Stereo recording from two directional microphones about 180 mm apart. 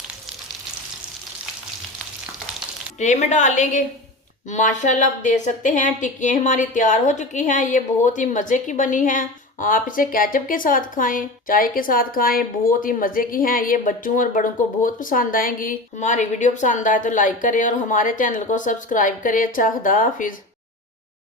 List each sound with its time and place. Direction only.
3.0 s a woman's voice: 40° left (ahead or behind)